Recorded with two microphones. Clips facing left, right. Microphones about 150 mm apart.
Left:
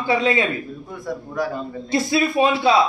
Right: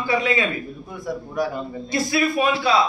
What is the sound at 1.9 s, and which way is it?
Speech, 25° left (ahead or behind).